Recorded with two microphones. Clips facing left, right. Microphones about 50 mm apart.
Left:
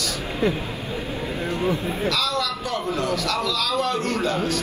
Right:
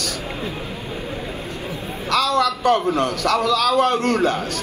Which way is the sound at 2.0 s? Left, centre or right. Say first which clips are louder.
Right 7 dB; right.